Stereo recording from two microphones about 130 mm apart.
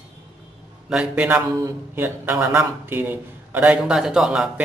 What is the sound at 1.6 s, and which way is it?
A man's voice, 15° right (ahead or behind).